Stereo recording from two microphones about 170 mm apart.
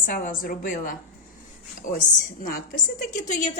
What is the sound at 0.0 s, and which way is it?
A woman's voice, 55° left (ahead or behind).